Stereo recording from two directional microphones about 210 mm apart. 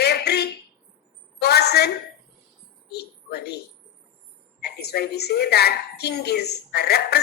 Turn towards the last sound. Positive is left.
turn(degrees=50)  # may be behind; listen again after turning